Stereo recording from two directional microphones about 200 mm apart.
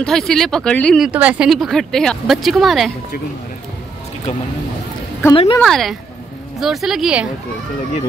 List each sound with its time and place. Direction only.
0.0 s speech: centre (ahead or behind)
5.3 s speech: 25° left (ahead or behind)
5.6 s speech: centre (ahead or behind)